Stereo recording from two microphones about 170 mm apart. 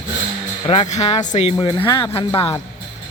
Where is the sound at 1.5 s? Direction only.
25° left (ahead or behind).